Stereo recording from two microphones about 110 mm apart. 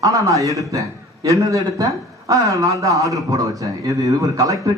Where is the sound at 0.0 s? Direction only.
30° right (ahead or behind).